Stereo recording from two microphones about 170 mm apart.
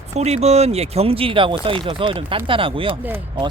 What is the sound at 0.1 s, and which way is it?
Speech, 40° right (ahead or behind).